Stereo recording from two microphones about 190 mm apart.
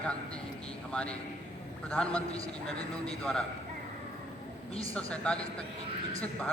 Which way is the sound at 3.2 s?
5° left (ahead or behind).